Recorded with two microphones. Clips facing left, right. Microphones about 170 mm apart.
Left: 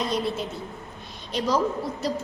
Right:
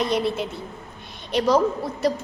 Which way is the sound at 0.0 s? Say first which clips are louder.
Right 4 dB; 65° right (ahead or behind).